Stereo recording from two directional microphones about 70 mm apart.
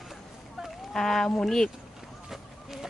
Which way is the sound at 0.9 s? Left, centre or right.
Centre.